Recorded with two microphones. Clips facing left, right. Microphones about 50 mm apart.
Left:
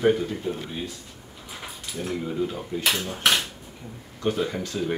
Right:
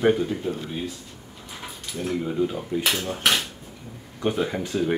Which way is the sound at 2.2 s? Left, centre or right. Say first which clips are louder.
Right 4 dB; centre.